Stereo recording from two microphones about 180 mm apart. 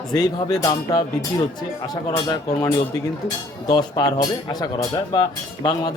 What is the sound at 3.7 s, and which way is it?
Speech, 20° left (ahead or behind).